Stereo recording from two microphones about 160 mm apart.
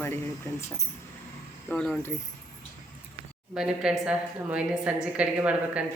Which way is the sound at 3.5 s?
5° right (ahead or behind).